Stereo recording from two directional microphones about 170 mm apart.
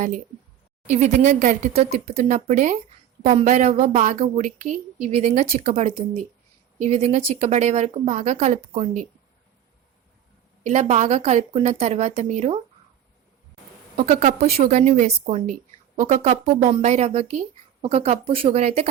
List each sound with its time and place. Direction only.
0.9 s a woman's voice: 45° right (ahead or behind)
10.7 s a woman's voice: 45° right (ahead or behind)
13.9 s a woman's voice: 40° right (ahead or behind)